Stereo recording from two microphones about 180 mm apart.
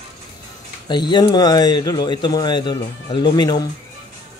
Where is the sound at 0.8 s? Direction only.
25° left (ahead or behind).